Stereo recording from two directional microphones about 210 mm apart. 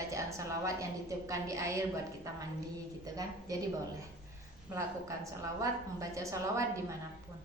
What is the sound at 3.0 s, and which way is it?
Speech, 15° right (ahead or behind).